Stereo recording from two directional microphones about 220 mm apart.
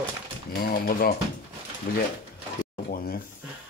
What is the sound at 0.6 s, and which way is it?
Speech, 40° left (ahead or behind).